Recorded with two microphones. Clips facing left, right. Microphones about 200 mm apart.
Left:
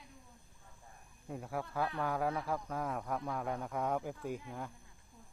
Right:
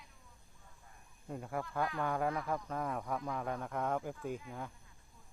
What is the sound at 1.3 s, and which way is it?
Speech, centre (ahead or behind).